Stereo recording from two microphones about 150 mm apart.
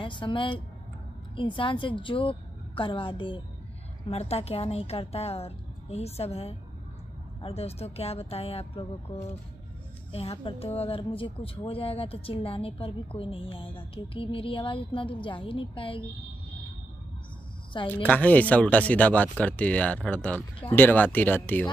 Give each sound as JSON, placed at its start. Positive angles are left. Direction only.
{"t": 0.0, "sound": "a woman's voice", "side_deg": 35}
{"t": 18.0, "sound": "speech", "side_deg": 10}